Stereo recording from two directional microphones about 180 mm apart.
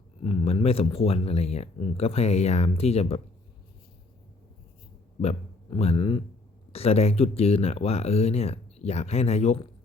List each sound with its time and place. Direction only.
0.2 s speech: 30° left (ahead or behind)
5.2 s a man's voice: 35° left (ahead or behind)